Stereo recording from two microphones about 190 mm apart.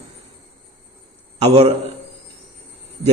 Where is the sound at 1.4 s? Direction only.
35° right (ahead or behind).